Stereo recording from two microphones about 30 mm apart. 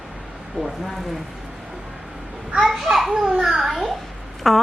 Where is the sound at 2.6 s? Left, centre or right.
Centre.